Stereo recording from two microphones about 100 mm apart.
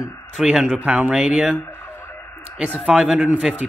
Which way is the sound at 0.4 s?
5° right (ahead or behind).